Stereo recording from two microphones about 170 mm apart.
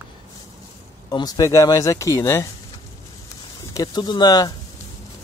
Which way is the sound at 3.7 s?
20° left (ahead or behind).